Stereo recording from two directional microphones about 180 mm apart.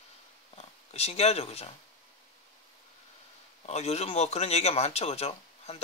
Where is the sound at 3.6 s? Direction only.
35° left (ahead or behind).